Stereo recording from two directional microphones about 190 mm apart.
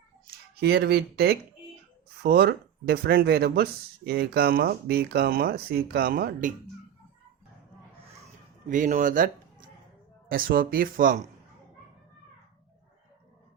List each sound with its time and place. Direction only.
0.3 s speech: 60° right (ahead or behind)
8.6 s speech: 40° right (ahead or behind)